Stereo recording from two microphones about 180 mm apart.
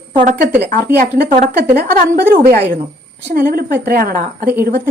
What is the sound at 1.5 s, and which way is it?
A woman's voice, 60° right (ahead or behind).